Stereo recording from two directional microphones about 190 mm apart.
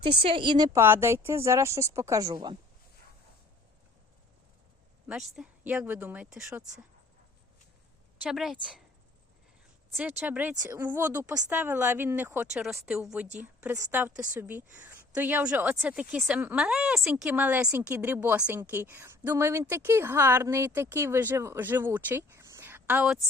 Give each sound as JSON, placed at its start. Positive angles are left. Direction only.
{"t": 0.0, "sound": "a woman's voice", "side_deg": -30}
{"t": 5.0, "sound": "a woman's voice", "side_deg": 0}
{"t": 8.2, "sound": "a woman's voice", "side_deg": 0}
{"t": 9.9, "sound": "a woman's voice", "side_deg": -5}